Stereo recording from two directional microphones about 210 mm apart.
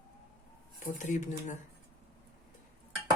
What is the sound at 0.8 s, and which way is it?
Speech, 35° left (ahead or behind).